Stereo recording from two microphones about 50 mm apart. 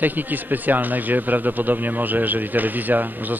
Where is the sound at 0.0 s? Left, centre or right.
Right.